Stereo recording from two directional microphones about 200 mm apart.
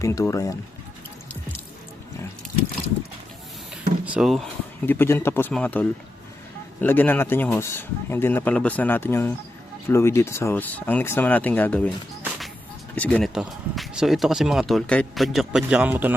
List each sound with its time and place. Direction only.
0.0 s speech: 15° left (ahead or behind)
3.7 s drawer open or close: 5° right (ahead or behind)
4.9 s speech: 10° left (ahead or behind); by 16.1 s 10° right (ahead or behind)